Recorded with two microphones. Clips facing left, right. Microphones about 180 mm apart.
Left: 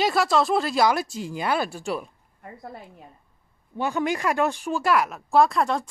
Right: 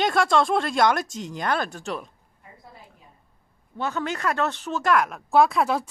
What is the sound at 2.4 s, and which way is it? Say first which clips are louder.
Speech: left 9 dB; 60° left (ahead or behind).